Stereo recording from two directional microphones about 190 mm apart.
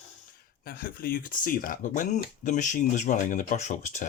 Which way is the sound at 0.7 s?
50° left (ahead or behind).